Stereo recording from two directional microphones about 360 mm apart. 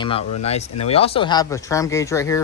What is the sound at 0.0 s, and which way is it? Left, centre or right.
A man's voice, centre.